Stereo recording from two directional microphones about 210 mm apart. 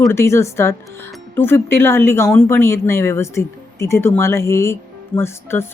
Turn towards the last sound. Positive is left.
turn(degrees=10)  # may be behind; listen again after turning